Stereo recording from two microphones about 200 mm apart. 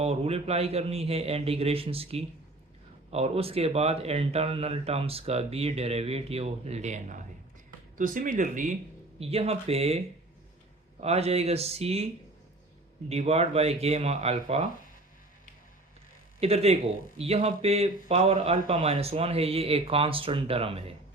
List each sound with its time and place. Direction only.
0.0 s speech: 30° right (ahead or behind)
9.2 s speech: 30° right (ahead or behind)
11.0 s speech: 30° right (ahead or behind)
13.1 s speech: 30° right (ahead or behind)
16.4 s speech: 30° right (ahead or behind)